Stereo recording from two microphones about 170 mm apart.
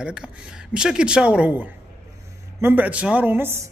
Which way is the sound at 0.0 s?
5° right (ahead or behind).